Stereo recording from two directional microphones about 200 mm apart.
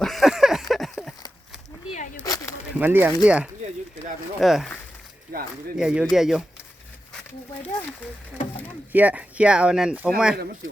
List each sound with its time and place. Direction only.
0.0 s a sound: centre (ahead or behind)
0.7 s horse: centre (ahead or behind)
2.1 s a sound: 15° left (ahead or behind)
2.6 s speech: 10° right (ahead or behind)
5.3 s speech: 50° right (ahead or behind)
5.7 s speech: 5° right (ahead or behind)
8.9 s speech: 10° right (ahead or behind)